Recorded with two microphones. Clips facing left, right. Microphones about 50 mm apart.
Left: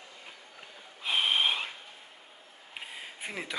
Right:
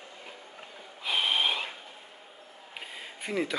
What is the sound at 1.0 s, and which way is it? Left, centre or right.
Snort, centre.